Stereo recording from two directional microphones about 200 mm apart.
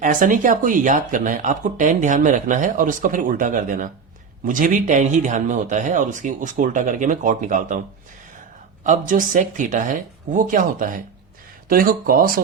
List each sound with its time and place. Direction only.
0.0 s speech: 40° right (ahead or behind)
8.8 s speech: 40° right (ahead or behind)